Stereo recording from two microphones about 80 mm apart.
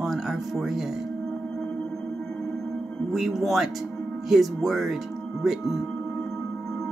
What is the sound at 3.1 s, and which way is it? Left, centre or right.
Speech, centre.